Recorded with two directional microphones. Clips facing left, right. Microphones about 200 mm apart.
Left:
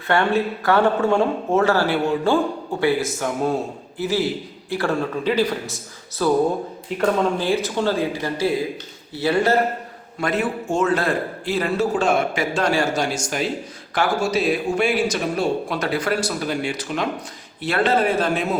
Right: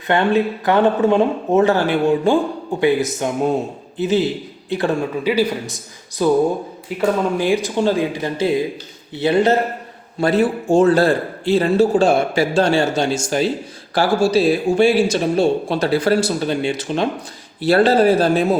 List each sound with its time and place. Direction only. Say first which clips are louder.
0.1 s a man's voice: right 3 dB; 20° right (ahead or behind)
10.2 s a man's voice: right 6 dB; 30° right (ahead or behind)